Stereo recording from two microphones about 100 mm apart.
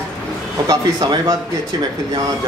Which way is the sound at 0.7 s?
45° right (ahead or behind).